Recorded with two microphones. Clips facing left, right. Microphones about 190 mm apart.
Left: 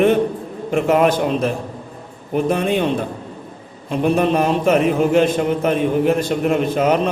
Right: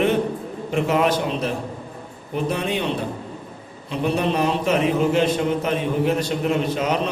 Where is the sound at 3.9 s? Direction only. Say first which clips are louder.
Left 5 dB; 50° left (ahead or behind).